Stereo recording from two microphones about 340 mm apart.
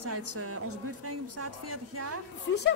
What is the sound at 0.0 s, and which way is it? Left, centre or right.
A man's voice, right.